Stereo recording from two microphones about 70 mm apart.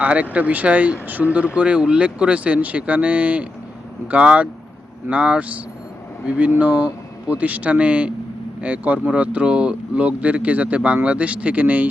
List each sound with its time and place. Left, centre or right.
0.0 s speech: right